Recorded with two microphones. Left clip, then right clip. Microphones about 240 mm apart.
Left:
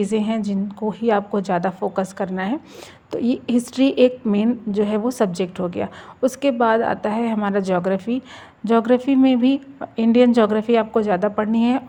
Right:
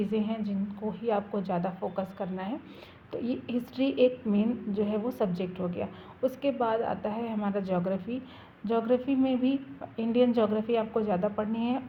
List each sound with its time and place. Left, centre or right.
0.0 s a woman's voice: left